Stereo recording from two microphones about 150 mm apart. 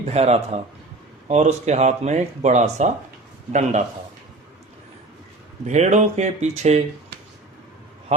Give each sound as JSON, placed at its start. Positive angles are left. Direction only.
{"t": 0.0, "sound": "speech", "side_deg": -45}
{"t": 5.6, "sound": "speech", "side_deg": -50}